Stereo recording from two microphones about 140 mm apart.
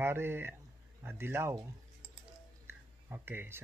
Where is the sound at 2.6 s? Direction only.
15° right (ahead or behind).